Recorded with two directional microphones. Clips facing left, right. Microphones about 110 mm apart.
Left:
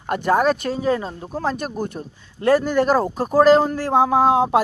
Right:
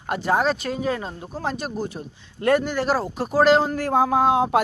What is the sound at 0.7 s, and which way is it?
Speech, 35° left (ahead or behind).